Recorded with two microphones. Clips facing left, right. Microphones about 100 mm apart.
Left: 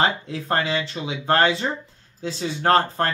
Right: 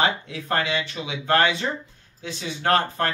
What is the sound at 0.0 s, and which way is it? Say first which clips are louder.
Speech: left 1 dB; 30° left (ahead or behind).